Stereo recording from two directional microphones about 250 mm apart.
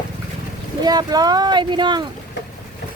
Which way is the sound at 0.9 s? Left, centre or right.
Centre.